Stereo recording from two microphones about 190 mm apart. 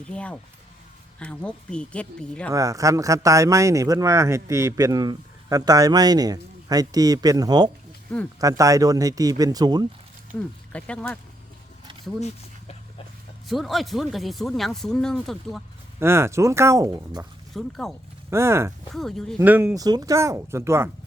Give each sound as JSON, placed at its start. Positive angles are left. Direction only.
{"t": 0.0, "sound": "speech", "side_deg": 5}
{"t": 2.5, "sound": "speech", "side_deg": -15}
{"t": 10.7, "sound": "speech", "side_deg": 5}
{"t": 13.5, "sound": "speech", "side_deg": 0}
{"t": 16.0, "sound": "speech", "side_deg": -15}
{"t": 17.5, "sound": "speech", "side_deg": 0}
{"t": 18.3, "sound": "speech", "side_deg": -15}
{"t": 18.9, "sound": "speech", "side_deg": 0}
{"t": 19.4, "sound": "speech", "side_deg": -10}